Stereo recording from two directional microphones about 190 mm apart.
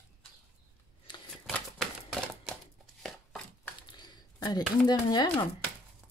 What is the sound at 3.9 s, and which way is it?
Speech, 25° left (ahead or behind).